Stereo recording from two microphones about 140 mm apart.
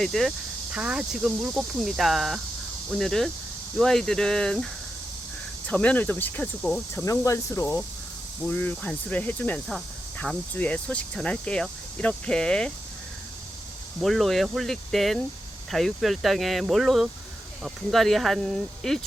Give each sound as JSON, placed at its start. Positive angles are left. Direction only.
{"t": 0.0, "sound": "speech", "side_deg": 0}
{"t": 6.9, "sound": "speech", "side_deg": 20}
{"t": 14.0, "sound": "speech", "side_deg": 0}